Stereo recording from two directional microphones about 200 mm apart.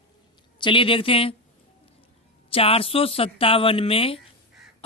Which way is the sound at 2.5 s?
30° left (ahead or behind).